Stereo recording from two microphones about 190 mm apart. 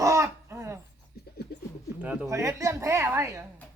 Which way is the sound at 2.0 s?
5° right (ahead or behind).